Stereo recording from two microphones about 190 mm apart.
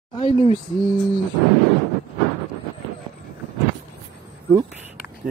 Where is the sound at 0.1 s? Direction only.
25° left (ahead or behind).